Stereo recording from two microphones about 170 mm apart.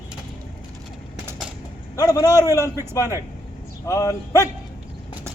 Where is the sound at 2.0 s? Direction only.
20° left (ahead or behind).